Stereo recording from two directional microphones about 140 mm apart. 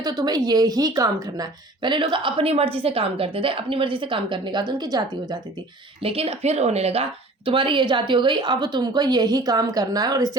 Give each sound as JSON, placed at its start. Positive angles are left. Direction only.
{"t": 0.0, "sound": "a woman's voice", "side_deg": -25}
{"t": 6.0, "sound": "speech", "side_deg": -45}
{"t": 7.4, "sound": "a woman's voice", "side_deg": -35}